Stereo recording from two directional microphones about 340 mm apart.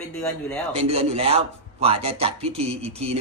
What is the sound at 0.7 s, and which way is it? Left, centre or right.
A man's voice, centre.